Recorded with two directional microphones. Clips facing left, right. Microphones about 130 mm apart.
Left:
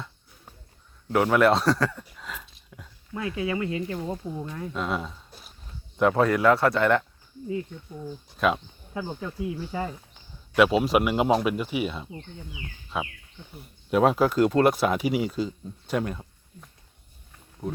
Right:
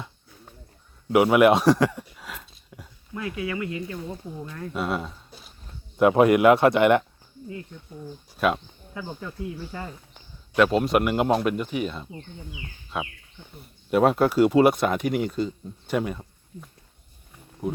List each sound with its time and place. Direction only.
1.1 s speech: 10° right (ahead or behind)
2.0 s a sound: 5° right (ahead or behind)
3.3 s speech: 30° left (ahead or behind)
4.4 s speech: 15° left (ahead or behind)
4.7 s speech: 5° right (ahead or behind)
6.0 s speech: 15° right (ahead or behind)
8.4 s speech: centre (ahead or behind)